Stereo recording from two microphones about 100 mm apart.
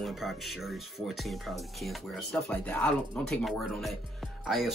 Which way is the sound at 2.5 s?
15° left (ahead or behind).